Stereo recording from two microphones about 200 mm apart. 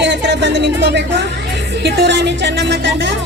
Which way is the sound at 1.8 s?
55° right (ahead or behind).